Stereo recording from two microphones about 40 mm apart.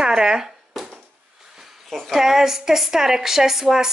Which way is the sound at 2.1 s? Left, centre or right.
Centre.